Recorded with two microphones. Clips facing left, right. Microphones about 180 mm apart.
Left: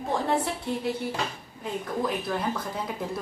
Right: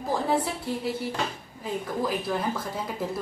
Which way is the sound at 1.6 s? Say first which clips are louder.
Even; 5° right (ahead or behind).